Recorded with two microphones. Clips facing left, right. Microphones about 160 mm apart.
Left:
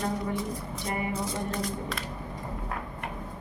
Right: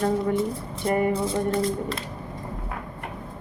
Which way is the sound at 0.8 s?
50° right (ahead or behind).